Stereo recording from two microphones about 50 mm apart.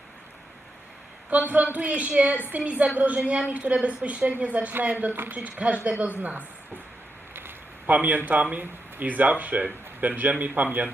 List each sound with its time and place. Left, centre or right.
1.3 s a woman's voice: right
5.4 s a woman's voice: right
7.9 s a woman's voice: right